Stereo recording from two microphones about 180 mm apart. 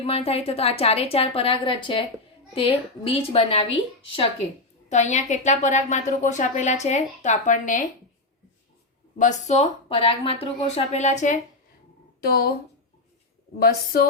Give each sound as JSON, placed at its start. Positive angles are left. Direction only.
{"t": 0.0, "sound": "a woman's voice", "side_deg": 35}
{"t": 9.1, "sound": "a woman's voice", "side_deg": 40}
{"t": 12.2, "sound": "a woman's voice", "side_deg": 55}
{"t": 13.6, "sound": "a woman's voice", "side_deg": 55}